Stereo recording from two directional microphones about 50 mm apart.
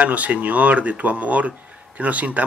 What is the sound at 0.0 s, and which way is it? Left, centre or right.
Speech, right.